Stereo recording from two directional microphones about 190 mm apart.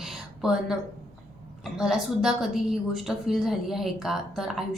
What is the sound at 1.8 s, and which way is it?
A woman's voice, centre (ahead or behind).